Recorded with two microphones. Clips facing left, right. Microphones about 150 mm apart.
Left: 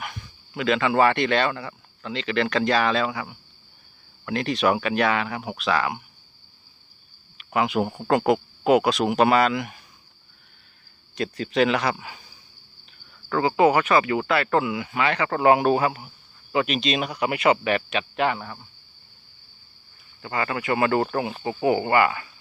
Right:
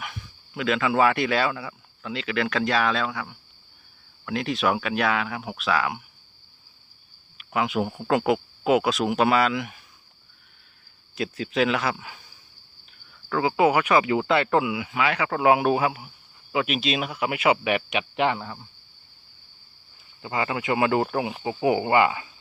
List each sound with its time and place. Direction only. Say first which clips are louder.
0.0 s speech: left 2 dB; centre (ahead or behind)
7.3 s speech: left 2 dB; centre (ahead or behind)
11.1 s speech: left 2 dB; 5° right (ahead or behind)
13.3 s speech: left 2 dB; 5° right (ahead or behind)
20.2 s speech: even; 15° right (ahead or behind)